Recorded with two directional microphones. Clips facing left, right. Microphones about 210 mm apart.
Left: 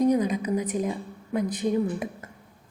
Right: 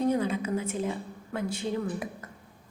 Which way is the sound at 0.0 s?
15° left (ahead or behind).